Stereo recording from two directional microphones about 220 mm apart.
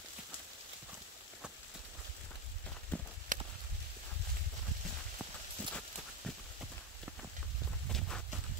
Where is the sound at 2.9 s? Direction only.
5° left (ahead or behind).